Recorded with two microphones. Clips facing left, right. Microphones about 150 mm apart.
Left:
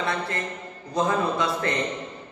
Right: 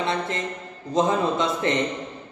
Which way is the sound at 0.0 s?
20° right (ahead or behind).